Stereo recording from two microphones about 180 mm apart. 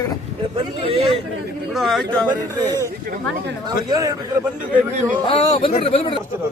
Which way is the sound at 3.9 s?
20° right (ahead or behind).